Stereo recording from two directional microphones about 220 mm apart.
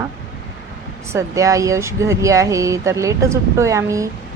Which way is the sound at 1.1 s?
15° right (ahead or behind).